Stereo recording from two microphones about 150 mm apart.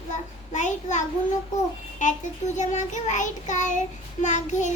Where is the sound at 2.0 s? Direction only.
55° left (ahead or behind).